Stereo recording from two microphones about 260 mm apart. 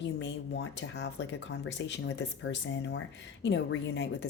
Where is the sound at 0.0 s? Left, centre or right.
Left.